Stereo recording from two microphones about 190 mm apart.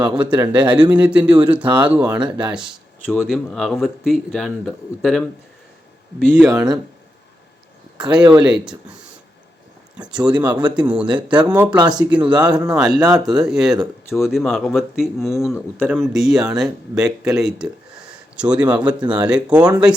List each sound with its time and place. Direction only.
0.0 s speech: 5° right (ahead or behind)
6.5 s speech: 20° right (ahead or behind)
8.1 s speech: 5° right (ahead or behind)
10.8 s speech: 5° right (ahead or behind)
11.8 s speech: 20° right (ahead or behind)
12.1 s speech: 5° right (ahead or behind)